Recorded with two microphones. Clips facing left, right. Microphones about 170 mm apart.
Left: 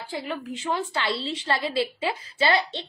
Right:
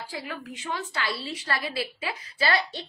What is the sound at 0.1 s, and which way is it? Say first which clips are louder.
A woman's voice: left 9 dB; 25° left (ahead or behind).